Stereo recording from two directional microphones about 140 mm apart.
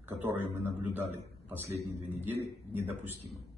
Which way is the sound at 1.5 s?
20° right (ahead or behind).